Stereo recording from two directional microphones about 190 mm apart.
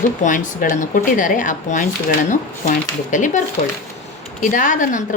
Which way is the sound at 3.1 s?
40° left (ahead or behind).